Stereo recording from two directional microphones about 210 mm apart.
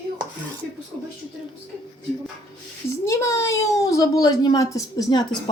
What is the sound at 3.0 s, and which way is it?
A child's voice, 15° left (ahead or behind).